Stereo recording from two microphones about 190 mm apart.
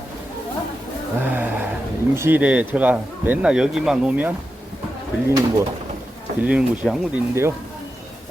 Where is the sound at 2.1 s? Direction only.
10° right (ahead or behind).